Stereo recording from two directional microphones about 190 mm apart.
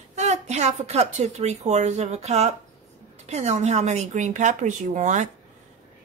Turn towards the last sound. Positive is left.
turn(degrees=-40)  # may be behind; listen again after turning